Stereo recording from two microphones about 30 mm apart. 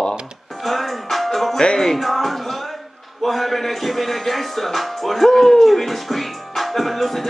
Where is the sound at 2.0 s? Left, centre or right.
Centre.